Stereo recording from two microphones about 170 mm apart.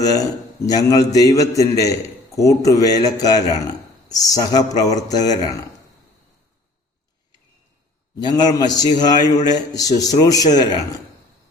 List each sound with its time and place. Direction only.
0.0 s a man's voice: 20° left (ahead or behind)
8.2 s a man's voice: 25° left (ahead or behind)